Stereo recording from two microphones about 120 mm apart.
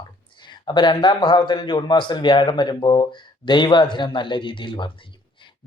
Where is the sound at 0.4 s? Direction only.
40° left (ahead or behind).